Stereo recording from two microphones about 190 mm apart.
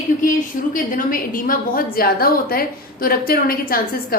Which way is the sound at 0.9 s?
45° left (ahead or behind).